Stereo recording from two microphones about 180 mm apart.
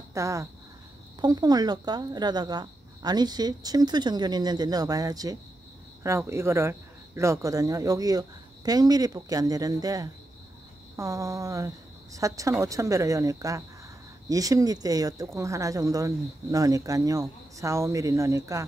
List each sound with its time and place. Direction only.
0.1 s speech: 15° right (ahead or behind)